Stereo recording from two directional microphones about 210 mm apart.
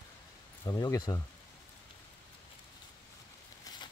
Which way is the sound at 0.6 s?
20° left (ahead or behind).